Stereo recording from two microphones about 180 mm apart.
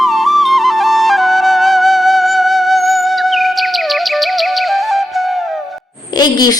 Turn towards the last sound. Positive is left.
turn(degrees=20)  # may be behind; listen again after turning